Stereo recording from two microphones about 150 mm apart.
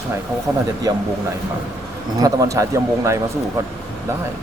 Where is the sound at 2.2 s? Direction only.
20° right (ahead or behind).